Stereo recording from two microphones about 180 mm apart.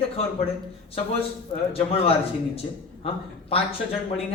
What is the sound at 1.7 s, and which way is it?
Speech, 35° left (ahead or behind).